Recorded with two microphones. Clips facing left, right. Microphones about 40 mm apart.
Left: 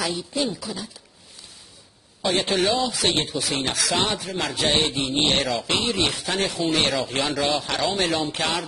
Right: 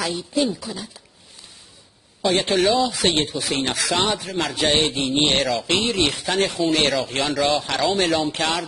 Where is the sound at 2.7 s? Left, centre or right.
Right.